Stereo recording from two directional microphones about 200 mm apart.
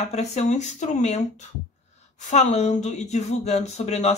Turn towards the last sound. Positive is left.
turn(degrees=35)  # may be behind; listen again after turning